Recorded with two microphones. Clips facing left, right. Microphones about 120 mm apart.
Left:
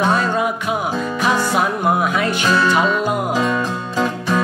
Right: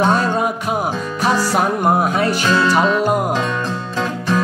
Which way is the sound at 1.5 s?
40° right (ahead or behind).